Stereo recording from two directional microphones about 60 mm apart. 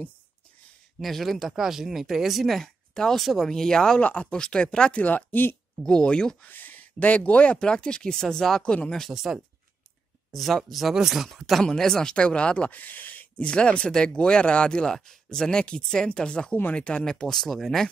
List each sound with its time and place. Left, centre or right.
0.9 s speech: centre
4.0 s speech: left
5.9 s speech: centre
6.4 s speech: left; by 9.1 s centre
9.1 s speech: centre
11.6 s speech: centre